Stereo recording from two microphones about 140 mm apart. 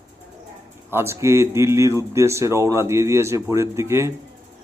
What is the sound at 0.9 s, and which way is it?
A man's voice, 20° right (ahead or behind).